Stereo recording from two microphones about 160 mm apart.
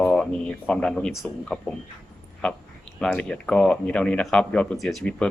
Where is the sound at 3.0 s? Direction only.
5° left (ahead or behind).